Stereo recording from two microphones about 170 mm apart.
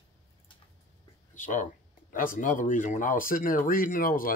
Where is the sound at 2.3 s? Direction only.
50° left (ahead or behind).